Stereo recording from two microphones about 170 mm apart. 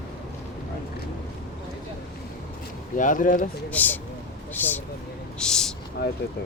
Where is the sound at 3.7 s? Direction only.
10° left (ahead or behind).